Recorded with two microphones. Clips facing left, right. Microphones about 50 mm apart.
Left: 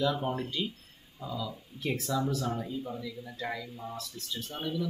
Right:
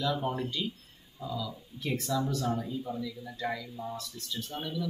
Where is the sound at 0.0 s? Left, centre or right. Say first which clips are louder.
Left 1 dB; centre.